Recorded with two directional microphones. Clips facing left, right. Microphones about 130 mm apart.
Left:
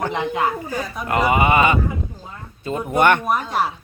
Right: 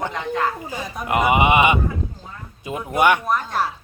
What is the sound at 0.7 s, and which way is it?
A man's voice, 20° right (ahead or behind).